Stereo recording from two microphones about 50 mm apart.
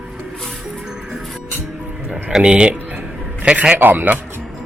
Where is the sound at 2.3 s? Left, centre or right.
Centre.